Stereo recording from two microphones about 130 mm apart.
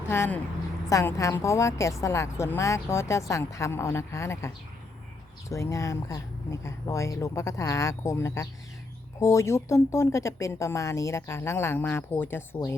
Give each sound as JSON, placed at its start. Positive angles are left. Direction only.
{"t": 0.1, "sound": "a woman's voice", "side_deg": 20}